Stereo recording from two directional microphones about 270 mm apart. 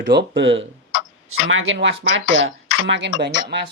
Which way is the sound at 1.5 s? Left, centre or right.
Right.